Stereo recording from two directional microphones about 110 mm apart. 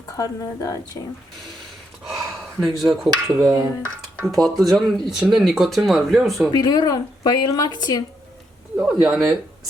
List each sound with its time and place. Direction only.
0.2 s speech: 30° left (ahead or behind)
2.7 s speech: centre (ahead or behind)
3.3 s speech: 35° right (ahead or behind)
4.3 s speech: centre (ahead or behind)
6.5 s speech: 40° left (ahead or behind)
8.7 s speech: 5° right (ahead or behind)